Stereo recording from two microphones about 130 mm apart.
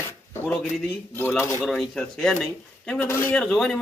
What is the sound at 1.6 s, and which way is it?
Speech, 5° left (ahead or behind).